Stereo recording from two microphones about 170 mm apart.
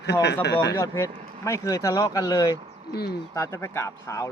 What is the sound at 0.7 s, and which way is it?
Speech, 20° left (ahead or behind).